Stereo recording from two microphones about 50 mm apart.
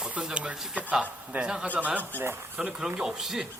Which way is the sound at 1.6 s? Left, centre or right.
Right.